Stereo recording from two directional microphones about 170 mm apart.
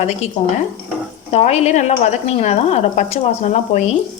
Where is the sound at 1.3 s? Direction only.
40° left (ahead or behind).